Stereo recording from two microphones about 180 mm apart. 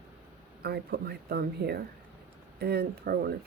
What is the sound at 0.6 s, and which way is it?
Speech, 60° right (ahead or behind).